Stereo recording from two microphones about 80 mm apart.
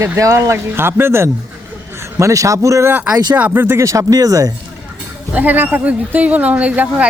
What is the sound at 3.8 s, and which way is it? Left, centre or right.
Speech, right.